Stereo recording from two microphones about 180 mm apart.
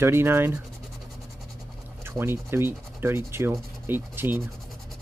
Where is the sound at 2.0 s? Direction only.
15° right (ahead or behind).